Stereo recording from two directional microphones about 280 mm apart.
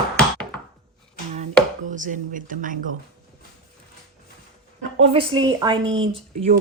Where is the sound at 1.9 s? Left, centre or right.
Right.